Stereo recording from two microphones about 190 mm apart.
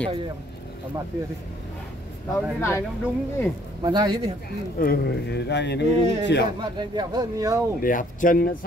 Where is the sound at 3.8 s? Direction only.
25° right (ahead or behind).